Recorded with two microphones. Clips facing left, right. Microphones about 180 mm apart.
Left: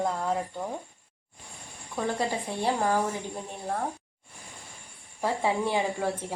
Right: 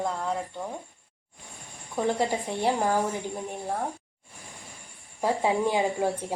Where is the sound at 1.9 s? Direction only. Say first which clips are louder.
Right 3 dB; 15° right (ahead or behind).